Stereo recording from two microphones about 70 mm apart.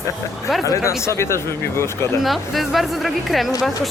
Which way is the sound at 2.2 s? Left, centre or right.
Centre.